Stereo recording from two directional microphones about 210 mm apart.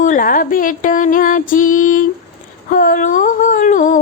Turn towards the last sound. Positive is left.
turn(degrees=40)  # may be behind; listen again after turning